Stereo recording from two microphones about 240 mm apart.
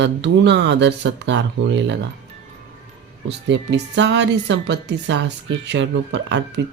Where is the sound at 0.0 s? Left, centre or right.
Right.